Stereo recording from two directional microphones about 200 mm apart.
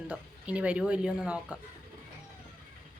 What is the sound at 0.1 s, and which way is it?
Speech, 5° right (ahead or behind).